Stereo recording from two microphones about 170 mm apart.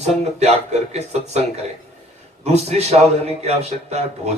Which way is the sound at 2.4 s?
40° right (ahead or behind).